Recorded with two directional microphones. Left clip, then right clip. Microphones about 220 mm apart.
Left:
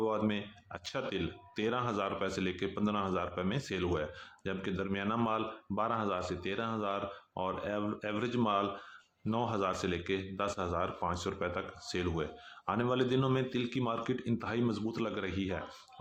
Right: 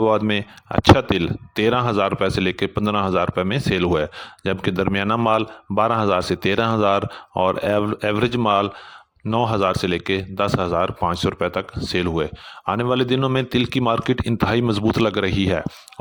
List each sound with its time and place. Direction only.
0.0 s speech: 45° right (ahead or behind)